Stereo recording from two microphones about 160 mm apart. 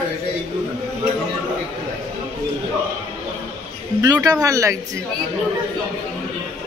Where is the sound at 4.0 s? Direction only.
25° right (ahead or behind).